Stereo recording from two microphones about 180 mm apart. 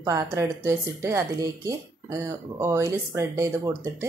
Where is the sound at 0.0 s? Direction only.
15° right (ahead or behind).